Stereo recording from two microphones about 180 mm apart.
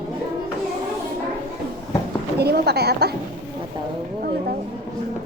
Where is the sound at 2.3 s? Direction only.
65° right (ahead or behind).